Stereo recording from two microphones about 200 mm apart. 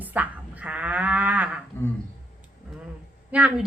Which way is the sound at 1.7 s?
10° left (ahead or behind).